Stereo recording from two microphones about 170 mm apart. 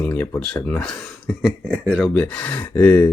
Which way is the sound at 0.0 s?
10° left (ahead or behind).